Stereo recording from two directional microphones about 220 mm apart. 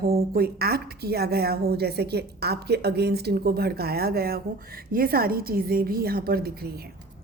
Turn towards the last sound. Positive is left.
turn(degrees=-45)  # may be behind; listen again after turning